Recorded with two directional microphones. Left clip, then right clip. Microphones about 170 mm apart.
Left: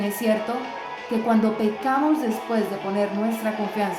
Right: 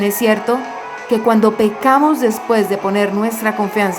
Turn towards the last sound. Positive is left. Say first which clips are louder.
# right 9 dB
turn(degrees=-50)  # may be behind; listen again after turning